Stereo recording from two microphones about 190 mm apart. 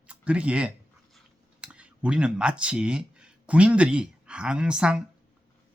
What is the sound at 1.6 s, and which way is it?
Speech, 5° right (ahead or behind).